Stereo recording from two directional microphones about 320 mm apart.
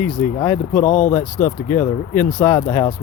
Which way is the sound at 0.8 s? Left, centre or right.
Left.